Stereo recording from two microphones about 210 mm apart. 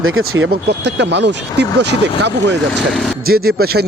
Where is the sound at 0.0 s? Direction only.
75° right (ahead or behind).